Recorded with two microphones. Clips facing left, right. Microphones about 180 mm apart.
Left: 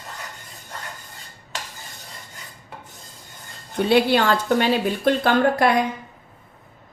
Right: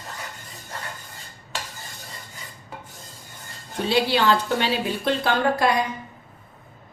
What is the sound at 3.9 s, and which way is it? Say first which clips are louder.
A woman's voice: left 2 dB; 55° left (ahead or behind).